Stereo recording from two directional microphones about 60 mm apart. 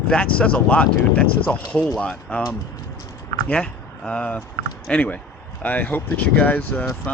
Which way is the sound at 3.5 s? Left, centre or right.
Centre.